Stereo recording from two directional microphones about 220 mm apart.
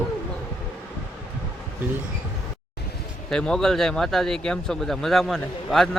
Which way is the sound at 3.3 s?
5° left (ahead or behind).